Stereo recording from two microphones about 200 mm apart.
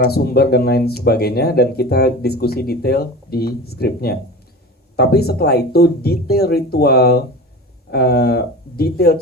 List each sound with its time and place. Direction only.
0.0 s speech: 50° left (ahead or behind)